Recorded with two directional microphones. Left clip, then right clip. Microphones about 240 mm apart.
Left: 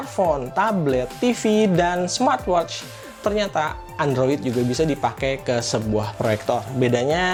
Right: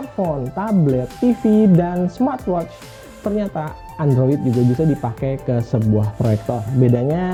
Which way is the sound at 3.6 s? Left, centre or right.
Centre.